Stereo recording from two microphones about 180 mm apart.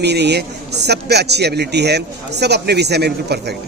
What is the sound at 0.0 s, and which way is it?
A man's voice, 70° right (ahead or behind).